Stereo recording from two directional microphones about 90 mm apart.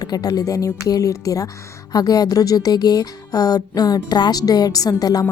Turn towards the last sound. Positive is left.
turn(degrees=45)  # may be behind; listen again after turning